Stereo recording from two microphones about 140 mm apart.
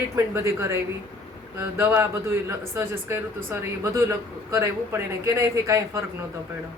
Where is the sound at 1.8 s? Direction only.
15° right (ahead or behind).